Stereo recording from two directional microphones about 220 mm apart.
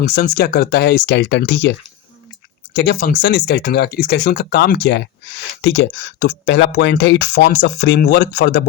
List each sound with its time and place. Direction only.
0.0 s speech: 45° left (ahead or behind)
2.7 s speech: 45° left (ahead or behind)